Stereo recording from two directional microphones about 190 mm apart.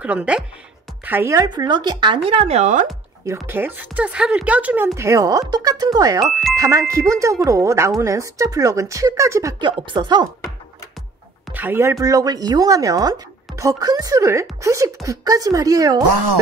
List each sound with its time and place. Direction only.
0.0 s a woman's voice: 5° right (ahead or behind); by 2.9 s 40° right (ahead or behind)
3.3 s speech: 10° right (ahead or behind)
11.5 s speech: 10° right (ahead or behind)